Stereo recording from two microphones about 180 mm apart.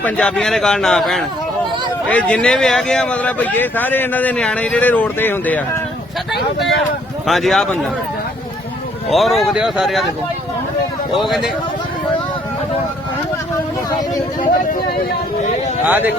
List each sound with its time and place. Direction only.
0.0 s a man's voice: 5° left (ahead or behind)
7.3 s a man's voice: centre (ahead or behind)
9.0 s a man's voice: centre (ahead or behind)
11.2 s a man's voice: centre (ahead or behind)
14.4 s speech: 50° left (ahead or behind)
15.9 s speech: 10° right (ahead or behind)